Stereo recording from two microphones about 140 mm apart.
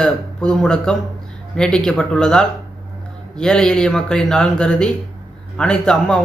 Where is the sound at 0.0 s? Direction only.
5° left (ahead or behind).